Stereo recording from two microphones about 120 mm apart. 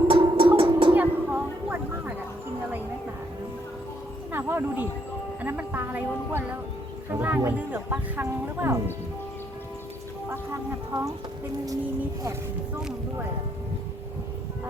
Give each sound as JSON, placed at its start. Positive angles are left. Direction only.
{"t": 0.1, "sound": "music", "side_deg": -45}
{"t": 0.9, "sound": "a sound", "side_deg": -15}
{"t": 4.3, "sound": "music", "side_deg": -20}
{"t": 5.4, "sound": "speech", "side_deg": -15}
{"t": 10.2, "sound": "speech", "side_deg": -20}